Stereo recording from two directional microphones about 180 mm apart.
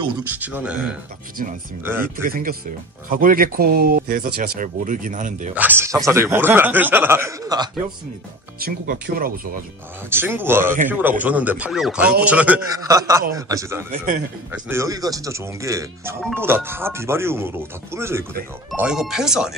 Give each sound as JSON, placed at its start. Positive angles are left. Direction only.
{"t": 0.3, "sound": "speech", "side_deg": -10}
{"t": 2.2, "sound": "speech", "side_deg": -55}
{"t": 5.5, "sound": "speech", "side_deg": -10}
{"t": 8.5, "sound": "speech", "side_deg": -55}
{"t": 10.0, "sound": "speech", "side_deg": -10}
{"t": 12.7, "sound": "a man's voice", "side_deg": -20}